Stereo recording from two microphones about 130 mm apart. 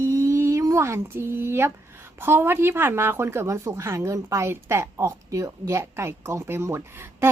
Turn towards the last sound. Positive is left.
turn(degrees=-20)  # may be behind; listen again after turning